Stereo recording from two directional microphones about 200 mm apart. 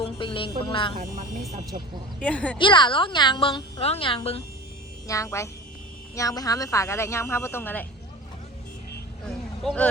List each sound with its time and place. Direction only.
0.0 s music: 25° left (ahead or behind)
2.1 s speech: 5° left (ahead or behind)
2.6 s a woman's voice: 25° left (ahead or behind)
5.0 s speech: 15° left (ahead or behind)
9.2 s vehicle: 5° left (ahead or behind)